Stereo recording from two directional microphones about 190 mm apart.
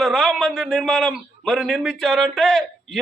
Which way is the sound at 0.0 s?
Centre (ahead or behind).